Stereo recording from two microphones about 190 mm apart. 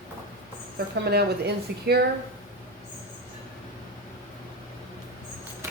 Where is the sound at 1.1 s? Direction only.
60° right (ahead or behind).